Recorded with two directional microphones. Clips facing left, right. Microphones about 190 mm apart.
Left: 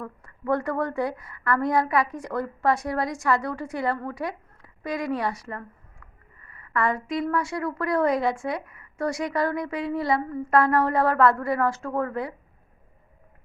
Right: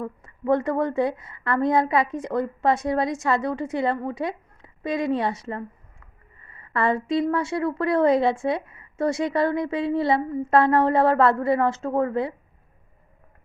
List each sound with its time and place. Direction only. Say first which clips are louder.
0.0 s a woman's voice: right 5 dB; 20° right (ahead or behind)